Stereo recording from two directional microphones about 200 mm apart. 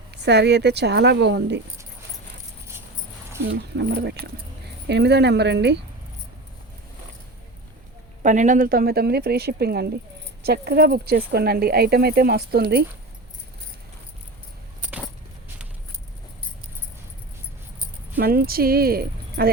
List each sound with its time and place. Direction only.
0.1 s speech: 55° right (ahead or behind)
3.4 s speech: 55° right (ahead or behind)
8.2 s speech: 40° right (ahead or behind)
18.2 s speech: 50° right (ahead or behind)